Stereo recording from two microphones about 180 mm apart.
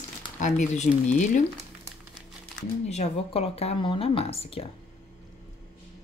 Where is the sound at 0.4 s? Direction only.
45° left (ahead or behind).